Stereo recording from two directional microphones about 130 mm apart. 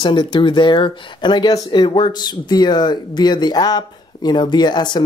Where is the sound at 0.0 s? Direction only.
35° left (ahead or behind).